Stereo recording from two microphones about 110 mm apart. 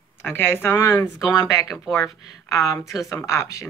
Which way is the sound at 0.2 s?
20° left (ahead or behind).